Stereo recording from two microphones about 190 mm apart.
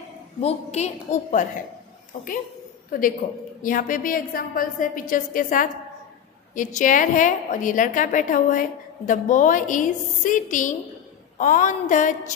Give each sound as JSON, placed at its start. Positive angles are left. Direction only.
{"t": 0.4, "sound": "a woman's voice", "side_deg": 35}
{"t": 3.2, "sound": "a woman's voice", "side_deg": 45}